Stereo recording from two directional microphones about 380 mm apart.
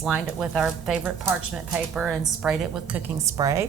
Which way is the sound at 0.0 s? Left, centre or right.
Centre.